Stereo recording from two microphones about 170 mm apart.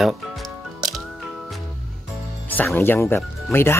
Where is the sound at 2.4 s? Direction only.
10° left (ahead or behind).